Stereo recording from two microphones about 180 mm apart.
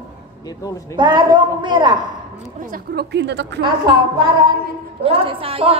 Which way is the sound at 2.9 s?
70° right (ahead or behind).